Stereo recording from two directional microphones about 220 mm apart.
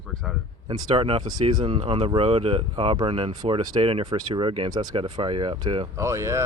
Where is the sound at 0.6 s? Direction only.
25° right (ahead or behind).